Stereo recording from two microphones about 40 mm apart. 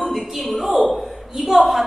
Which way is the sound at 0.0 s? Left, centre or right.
Centre.